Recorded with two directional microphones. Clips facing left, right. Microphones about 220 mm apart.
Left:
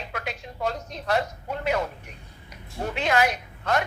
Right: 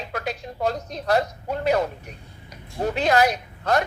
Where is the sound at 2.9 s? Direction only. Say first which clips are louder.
Right 3 dB; 40° right (ahead or behind).